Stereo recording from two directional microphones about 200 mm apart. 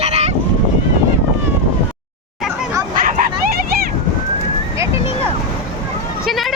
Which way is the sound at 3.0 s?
45° right (ahead or behind).